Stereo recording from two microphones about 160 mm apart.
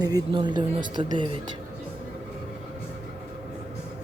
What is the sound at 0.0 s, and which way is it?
Speech, 25° right (ahead or behind).